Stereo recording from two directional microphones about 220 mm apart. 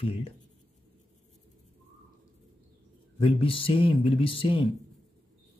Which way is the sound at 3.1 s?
25° left (ahead or behind).